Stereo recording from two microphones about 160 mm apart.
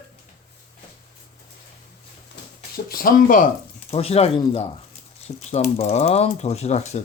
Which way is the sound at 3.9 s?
40° left (ahead or behind).